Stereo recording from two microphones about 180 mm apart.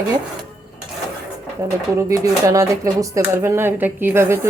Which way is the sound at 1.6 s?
15° right (ahead or behind).